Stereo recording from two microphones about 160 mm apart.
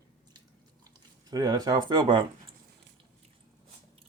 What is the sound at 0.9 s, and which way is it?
Speech, 25° right (ahead or behind).